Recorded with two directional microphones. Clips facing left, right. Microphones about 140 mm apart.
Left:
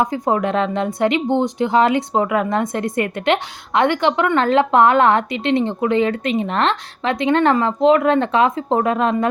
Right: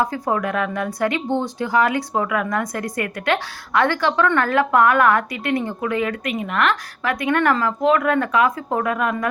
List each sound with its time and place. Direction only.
0.0 s speech: 20° left (ahead or behind)